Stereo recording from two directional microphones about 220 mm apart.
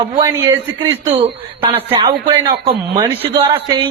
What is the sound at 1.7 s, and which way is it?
A man's voice, 15° right (ahead or behind).